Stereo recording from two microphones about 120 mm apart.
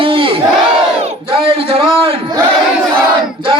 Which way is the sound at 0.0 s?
45° right (ahead or behind).